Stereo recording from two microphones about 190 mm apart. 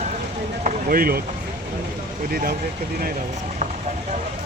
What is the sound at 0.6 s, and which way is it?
Speech, 50° right (ahead or behind).